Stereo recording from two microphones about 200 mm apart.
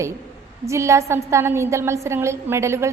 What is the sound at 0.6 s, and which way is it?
A woman's voice, 15° right (ahead or behind).